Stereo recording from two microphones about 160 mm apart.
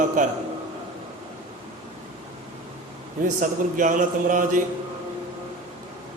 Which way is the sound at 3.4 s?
55° right (ahead or behind).